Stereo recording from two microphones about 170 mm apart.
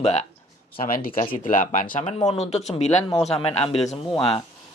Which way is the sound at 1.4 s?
55° left (ahead or behind).